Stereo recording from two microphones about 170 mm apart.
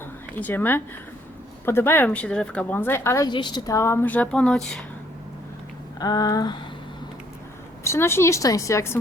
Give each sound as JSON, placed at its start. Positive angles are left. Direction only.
{"t": 0.3, "sound": "speech", "side_deg": 10}
{"t": 3.2, "sound": "speech", "side_deg": 25}
{"t": 6.0, "sound": "a sound", "side_deg": 20}
{"t": 7.9, "sound": "speech", "side_deg": 15}